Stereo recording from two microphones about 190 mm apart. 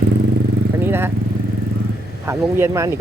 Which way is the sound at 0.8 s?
10° right (ahead or behind).